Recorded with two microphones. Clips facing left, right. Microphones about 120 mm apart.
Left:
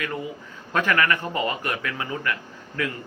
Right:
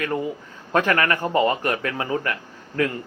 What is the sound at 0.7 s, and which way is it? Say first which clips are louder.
Speech: right 2 dB; 35° right (ahead or behind).